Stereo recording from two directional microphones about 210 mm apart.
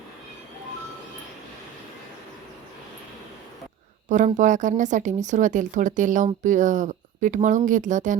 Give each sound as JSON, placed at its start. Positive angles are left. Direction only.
{"t": 4.4, "sound": "speech", "side_deg": -35}